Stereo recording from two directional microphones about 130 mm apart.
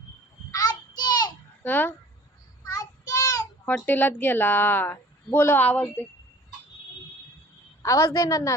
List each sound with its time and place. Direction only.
0.5 s child singing: 30° left (ahead or behind)
1.6 s speech: 15° left (ahead or behind)
2.6 s child singing: 25° left (ahead or behind)
3.7 s speech: 15° left (ahead or behind)
7.8 s a woman's voice: 20° left (ahead or behind)